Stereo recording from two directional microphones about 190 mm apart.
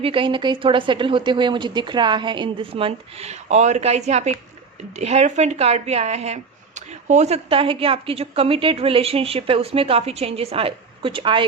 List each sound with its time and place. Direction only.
0.0 s speech: 25° right (ahead or behind)